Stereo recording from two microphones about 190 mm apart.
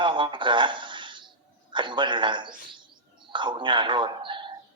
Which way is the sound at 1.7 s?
25° right (ahead or behind).